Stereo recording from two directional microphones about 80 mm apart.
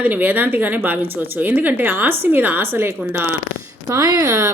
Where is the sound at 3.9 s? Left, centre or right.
Right.